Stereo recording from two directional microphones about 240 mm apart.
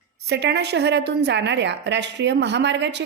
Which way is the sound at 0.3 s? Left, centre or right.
Right.